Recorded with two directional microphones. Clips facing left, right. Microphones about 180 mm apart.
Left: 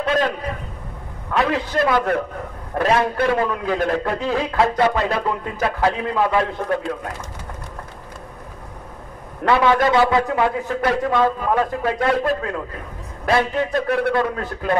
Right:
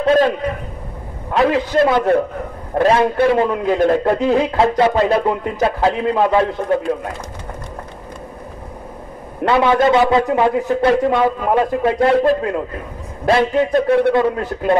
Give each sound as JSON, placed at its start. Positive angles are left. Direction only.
{"t": 0.0, "sound": "a man's voice", "side_deg": -35}
{"t": 1.3, "sound": "a man's voice", "side_deg": -30}
{"t": 9.4, "sound": "a man's voice", "side_deg": -20}
{"t": 13.2, "sound": "a man's voice", "side_deg": -25}